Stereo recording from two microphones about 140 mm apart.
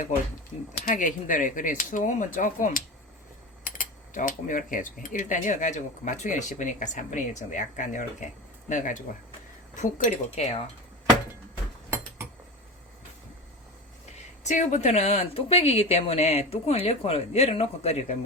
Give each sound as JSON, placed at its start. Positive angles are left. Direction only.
{"t": 0.9, "sound": "speech", "side_deg": 70}
{"t": 14.4, "sound": "speech", "side_deg": 60}